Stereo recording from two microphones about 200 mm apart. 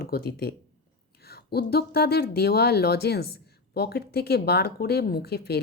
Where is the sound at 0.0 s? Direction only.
50° left (ahead or behind).